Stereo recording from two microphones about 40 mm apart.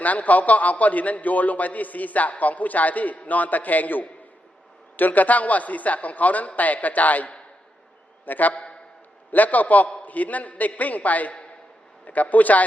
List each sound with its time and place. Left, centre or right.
0.0 s a man's voice: left